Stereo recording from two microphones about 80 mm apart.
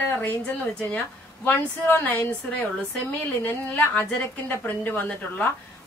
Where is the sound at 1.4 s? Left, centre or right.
Left.